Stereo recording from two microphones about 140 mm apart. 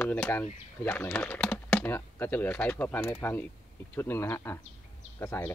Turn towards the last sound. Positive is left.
turn(degrees=15)  # may be behind; listen again after turning